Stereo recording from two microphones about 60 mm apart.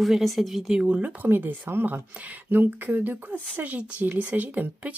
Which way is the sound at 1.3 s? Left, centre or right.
Right.